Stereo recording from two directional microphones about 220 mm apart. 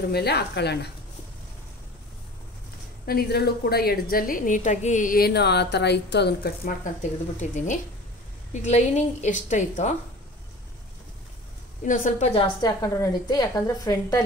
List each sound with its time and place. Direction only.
0.1 s a woman's voice: 45° left (ahead or behind)
3.1 s a woman's voice: 45° left (ahead or behind)
7.3 s a woman's voice: 35° left (ahead or behind)
11.8 s a woman's voice: 35° left (ahead or behind)
12.6 s a woman's voice: 15° left (ahead or behind)